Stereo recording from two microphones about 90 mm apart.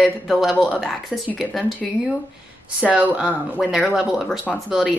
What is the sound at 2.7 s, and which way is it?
Speech, 15° right (ahead or behind).